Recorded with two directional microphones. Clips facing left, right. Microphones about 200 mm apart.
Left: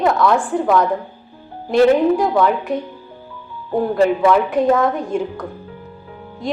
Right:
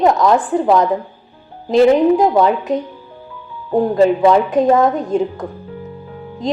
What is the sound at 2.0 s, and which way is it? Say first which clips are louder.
Speech: right 3 dB; 20° right (ahead or behind).